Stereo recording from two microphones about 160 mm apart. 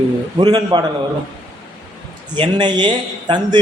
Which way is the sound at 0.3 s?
30° right (ahead or behind).